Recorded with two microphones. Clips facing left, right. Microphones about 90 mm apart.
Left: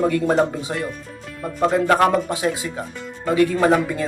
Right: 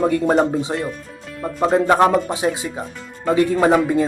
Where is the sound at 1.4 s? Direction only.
Centre (ahead or behind).